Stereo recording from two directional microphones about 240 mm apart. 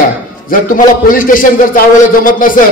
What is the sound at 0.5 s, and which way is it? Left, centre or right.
A man's voice, left.